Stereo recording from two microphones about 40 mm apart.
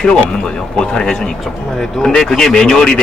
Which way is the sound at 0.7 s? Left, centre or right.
Left.